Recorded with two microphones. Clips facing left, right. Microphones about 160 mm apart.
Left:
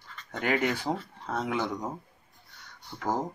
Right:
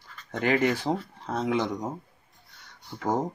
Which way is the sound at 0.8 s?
25° right (ahead or behind).